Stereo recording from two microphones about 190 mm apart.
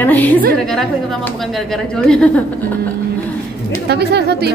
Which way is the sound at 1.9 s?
5° left (ahead or behind).